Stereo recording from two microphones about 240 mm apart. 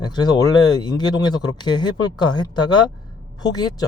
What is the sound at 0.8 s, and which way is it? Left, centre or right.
Speech, centre.